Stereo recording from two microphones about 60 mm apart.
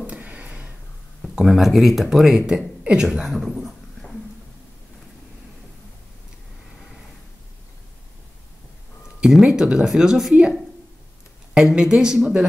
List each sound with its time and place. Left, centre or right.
0.0 s a sound: right
1.3 s speech: centre
9.2 s speech: centre
11.7 s speech: centre